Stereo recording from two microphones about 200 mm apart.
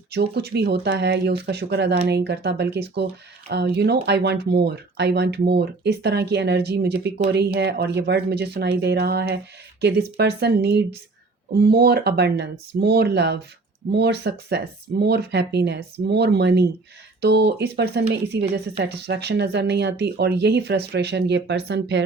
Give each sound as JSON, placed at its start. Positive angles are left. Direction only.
{"t": 0.1, "sound": "speech", "side_deg": -55}